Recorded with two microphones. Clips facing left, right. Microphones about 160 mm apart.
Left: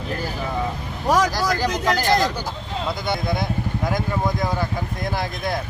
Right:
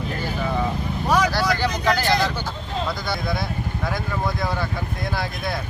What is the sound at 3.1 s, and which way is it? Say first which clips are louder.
Speech: left 2 dB; 20° left (ahead or behind).